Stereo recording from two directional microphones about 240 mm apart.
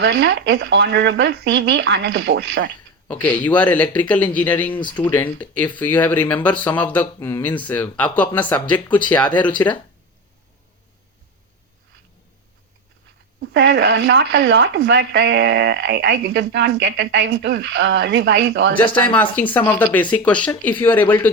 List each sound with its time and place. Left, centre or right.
0.0 s speech: right
3.1 s speech: centre
4.7 s speech: centre
5.0 s speech: centre
13.4 s speech: right
19.1 s speech: centre